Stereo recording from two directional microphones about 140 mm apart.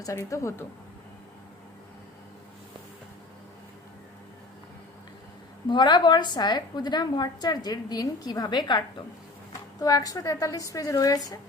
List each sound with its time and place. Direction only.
0.0 s a woman's voice: 20° left (ahead or behind)
5.6 s a woman's voice: 30° left (ahead or behind)